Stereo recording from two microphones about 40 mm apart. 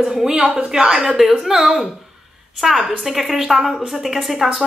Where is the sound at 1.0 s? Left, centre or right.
Centre.